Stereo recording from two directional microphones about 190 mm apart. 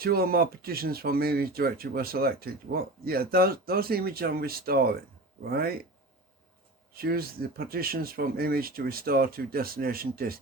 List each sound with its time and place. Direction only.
0.0 s speech: 55° right (ahead or behind)
6.9 s speech: 55° right (ahead or behind)